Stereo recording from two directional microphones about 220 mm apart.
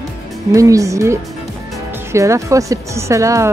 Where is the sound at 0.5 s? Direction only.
15° right (ahead or behind).